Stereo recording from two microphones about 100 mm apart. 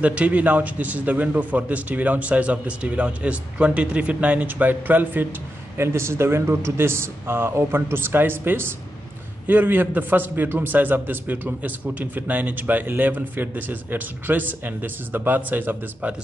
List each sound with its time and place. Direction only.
0.0 s a man's voice: 15° right (ahead or behind)